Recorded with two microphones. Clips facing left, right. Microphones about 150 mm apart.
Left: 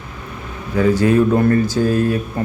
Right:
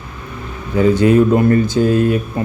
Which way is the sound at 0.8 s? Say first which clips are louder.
Right 3 dB; 25° right (ahead or behind).